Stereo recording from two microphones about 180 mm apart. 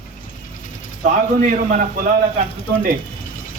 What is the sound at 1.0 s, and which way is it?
A man's voice, 45° right (ahead or behind).